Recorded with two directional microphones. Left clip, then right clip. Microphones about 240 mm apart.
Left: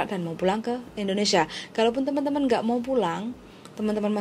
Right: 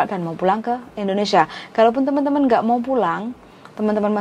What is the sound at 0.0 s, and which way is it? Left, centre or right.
A woman's voice, centre.